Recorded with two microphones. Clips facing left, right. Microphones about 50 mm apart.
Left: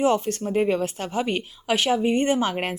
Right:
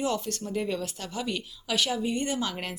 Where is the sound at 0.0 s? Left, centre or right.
Left.